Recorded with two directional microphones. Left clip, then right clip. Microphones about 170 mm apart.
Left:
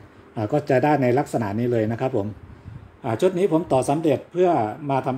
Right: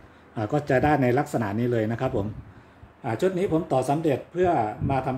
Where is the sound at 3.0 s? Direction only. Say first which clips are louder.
Left 4 dB; 35° left (ahead or behind).